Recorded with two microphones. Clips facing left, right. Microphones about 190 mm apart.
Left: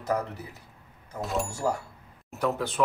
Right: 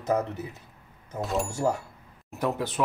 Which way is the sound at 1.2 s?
Centre (ahead or behind).